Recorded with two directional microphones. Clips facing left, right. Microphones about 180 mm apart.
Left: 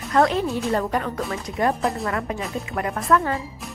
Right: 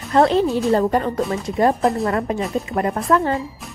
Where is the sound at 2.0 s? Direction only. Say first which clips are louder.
Right 5 dB; 35° right (ahead or behind).